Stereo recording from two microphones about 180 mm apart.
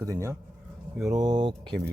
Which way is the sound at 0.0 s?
15° right (ahead or behind).